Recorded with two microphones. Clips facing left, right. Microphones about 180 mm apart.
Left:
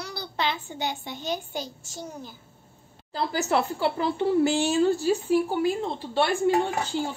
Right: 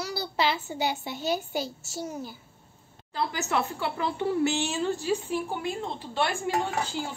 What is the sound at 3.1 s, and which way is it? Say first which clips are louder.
A woman's voice: left 3 dB; 35° left (ahead or behind).